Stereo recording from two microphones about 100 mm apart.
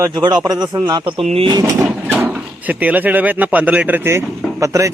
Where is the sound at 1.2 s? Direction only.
90° right.